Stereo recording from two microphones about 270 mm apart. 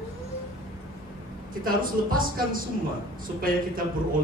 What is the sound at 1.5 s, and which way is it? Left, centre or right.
A man's voice, right.